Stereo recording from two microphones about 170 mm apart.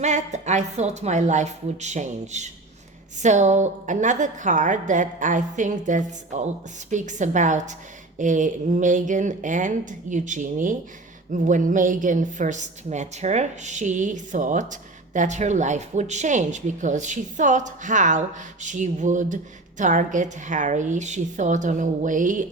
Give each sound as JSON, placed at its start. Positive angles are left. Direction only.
{"t": 0.0, "sound": "a woman's voice", "side_deg": -45}